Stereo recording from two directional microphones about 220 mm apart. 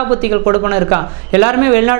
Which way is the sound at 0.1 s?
20° right (ahead or behind).